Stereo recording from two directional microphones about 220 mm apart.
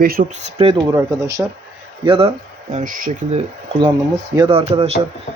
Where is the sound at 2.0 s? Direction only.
25° right (ahead or behind).